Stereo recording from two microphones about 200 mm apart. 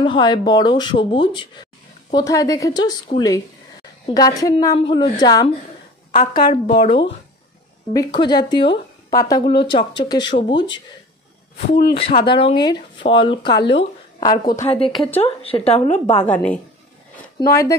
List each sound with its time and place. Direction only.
0.0 s speech: 25° left (ahead or behind)
7.9 s speech: 20° left (ahead or behind)
11.8 s a woman's voice: 30° left (ahead or behind)
16.3 s a woman's voice: 5° left (ahead or behind)